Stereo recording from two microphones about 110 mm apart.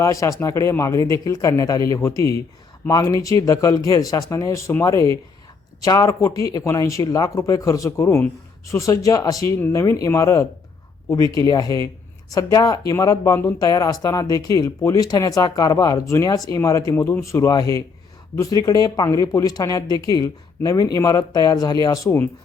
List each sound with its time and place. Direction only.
0.0 s speech: 30° left (ahead or behind)